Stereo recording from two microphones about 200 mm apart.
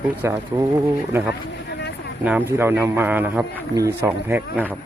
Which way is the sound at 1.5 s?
60° left (ahead or behind).